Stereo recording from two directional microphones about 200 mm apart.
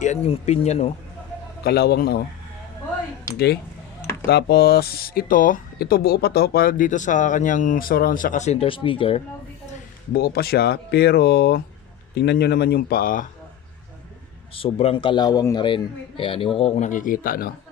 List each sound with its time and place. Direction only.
0.0 s speech: 35° left (ahead or behind)
1.6 s speech: 50° left (ahead or behind)
3.3 s speech: 55° left (ahead or behind); by 9.2 s 25° left (ahead or behind)
10.1 s speech: 55° left (ahead or behind)
14.5 s a man's voice: 30° left (ahead or behind); by 17.5 s 45° left (ahead or behind)